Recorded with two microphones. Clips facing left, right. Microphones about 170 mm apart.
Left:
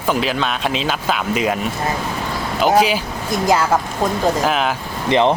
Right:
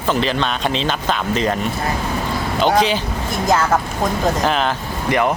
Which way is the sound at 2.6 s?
5° left (ahead or behind).